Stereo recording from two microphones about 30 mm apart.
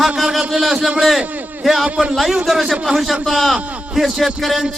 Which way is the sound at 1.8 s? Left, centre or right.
Right.